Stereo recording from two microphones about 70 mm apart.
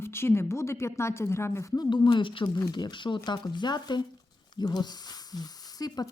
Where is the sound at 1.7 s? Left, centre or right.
Left.